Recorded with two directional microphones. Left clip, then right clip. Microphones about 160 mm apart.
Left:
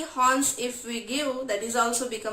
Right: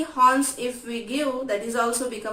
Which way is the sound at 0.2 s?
30° left (ahead or behind).